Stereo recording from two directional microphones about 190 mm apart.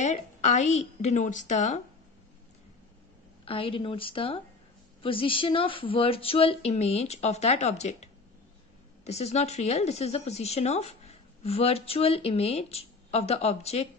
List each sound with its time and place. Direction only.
0.0 s a woman's voice: 40° left (ahead or behind)
3.4 s a woman's voice: 30° left (ahead or behind)